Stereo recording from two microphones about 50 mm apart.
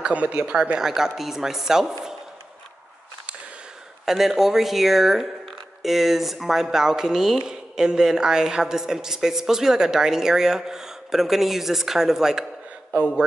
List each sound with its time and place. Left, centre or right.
0.0 s speech: right
0.7 s a woman's voice: centre
4.0 s a woman's voice: centre